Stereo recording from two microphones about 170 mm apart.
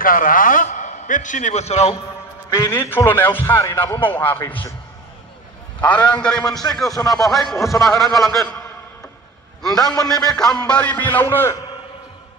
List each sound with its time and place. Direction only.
0.0 s a man's voice: 55° left (ahead or behind)
2.5 s a man's voice: 15° left (ahead or behind)
5.9 s speech: 25° left (ahead or behind)
7.3 s a man's voice: centre (ahead or behind)
7.7 s speech: 20° left (ahead or behind)
8.0 s a man's voice: centre (ahead or behind)